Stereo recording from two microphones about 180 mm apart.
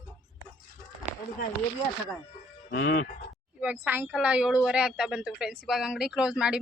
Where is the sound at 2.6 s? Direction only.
70° left (ahead or behind).